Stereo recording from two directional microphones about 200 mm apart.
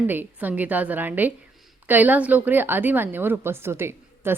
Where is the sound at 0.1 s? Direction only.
10° right (ahead or behind).